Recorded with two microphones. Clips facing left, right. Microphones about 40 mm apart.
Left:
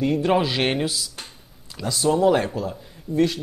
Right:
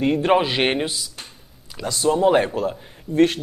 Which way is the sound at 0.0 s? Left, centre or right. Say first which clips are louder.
Right 2 dB; right.